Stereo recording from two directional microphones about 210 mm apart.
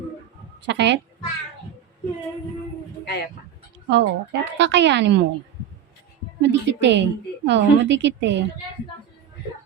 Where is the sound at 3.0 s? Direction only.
50° left (ahead or behind).